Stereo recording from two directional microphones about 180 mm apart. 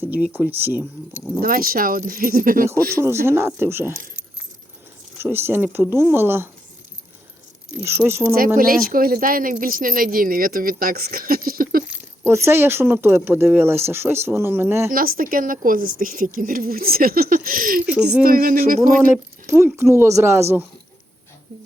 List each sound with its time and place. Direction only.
0.3 s speech: 10° right (ahead or behind)
1.4 s speech: 55° right (ahead or behind)
3.0 s speech: 15° right (ahead or behind)
5.1 s speech: 10° right (ahead or behind)
7.8 s speech: 15° right (ahead or behind)
8.5 s speech: 50° right (ahead or behind)
11.9 s speech: 15° right (ahead or behind)
14.9 s speech: 55° right (ahead or behind)
19.1 s speech: 15° right (ahead or behind)